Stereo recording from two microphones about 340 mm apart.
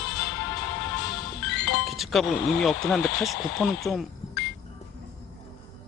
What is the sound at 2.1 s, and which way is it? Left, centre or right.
Speech, centre.